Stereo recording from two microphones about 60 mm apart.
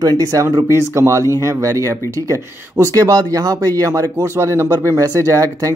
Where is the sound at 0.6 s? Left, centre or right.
Right.